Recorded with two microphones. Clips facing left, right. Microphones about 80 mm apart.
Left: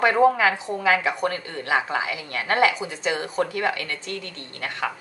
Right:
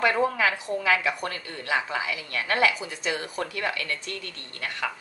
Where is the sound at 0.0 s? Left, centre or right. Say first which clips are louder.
Left 5 dB; left.